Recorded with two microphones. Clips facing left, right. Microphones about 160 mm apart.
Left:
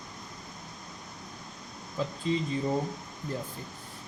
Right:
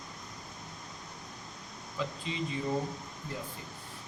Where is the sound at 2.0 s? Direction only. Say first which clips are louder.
Left 3 dB; 40° left (ahead or behind).